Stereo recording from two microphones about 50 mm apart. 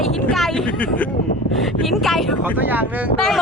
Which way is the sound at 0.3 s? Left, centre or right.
Centre.